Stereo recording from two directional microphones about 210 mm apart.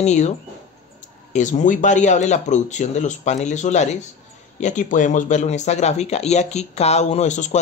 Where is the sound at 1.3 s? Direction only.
35° left (ahead or behind).